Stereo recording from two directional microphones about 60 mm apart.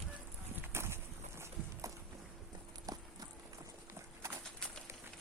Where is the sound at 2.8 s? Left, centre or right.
Right.